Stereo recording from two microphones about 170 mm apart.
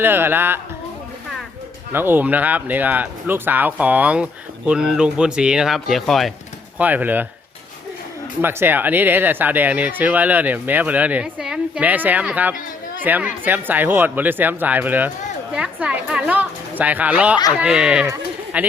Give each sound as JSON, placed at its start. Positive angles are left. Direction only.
{"t": 0.0, "sound": "speech", "side_deg": -10}
{"t": 1.9, "sound": "speech", "side_deg": -15}
{"t": 8.4, "sound": "speech", "side_deg": -15}
{"t": 18.0, "sound": "speech", "side_deg": -15}